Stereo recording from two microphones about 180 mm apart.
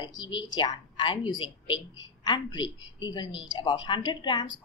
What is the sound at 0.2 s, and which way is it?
A woman's voice, 25° left (ahead or behind).